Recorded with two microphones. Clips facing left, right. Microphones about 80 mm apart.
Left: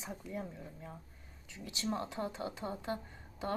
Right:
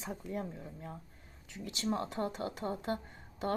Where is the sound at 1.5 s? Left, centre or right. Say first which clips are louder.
Right 2 dB; right.